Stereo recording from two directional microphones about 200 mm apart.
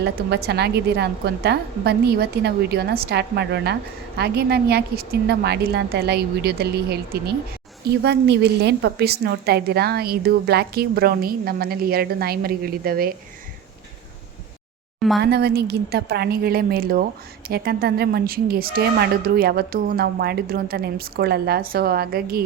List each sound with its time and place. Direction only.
0.0 s a woman's voice: 55° right (ahead or behind)
14.9 s a sound: centre (ahead or behind)
15.2 s a woman's voice: 50° right (ahead or behind)